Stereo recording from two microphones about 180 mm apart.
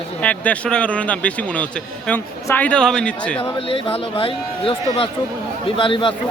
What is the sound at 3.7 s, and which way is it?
A man's voice, 30° left (ahead or behind).